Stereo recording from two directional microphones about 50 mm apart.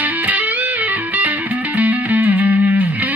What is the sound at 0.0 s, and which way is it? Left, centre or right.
Music, right.